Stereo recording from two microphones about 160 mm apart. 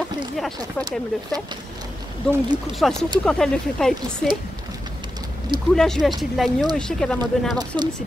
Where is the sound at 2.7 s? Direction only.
Centre (ahead or behind).